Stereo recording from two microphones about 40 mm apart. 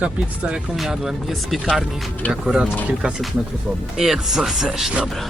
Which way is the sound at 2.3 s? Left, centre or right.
Centre.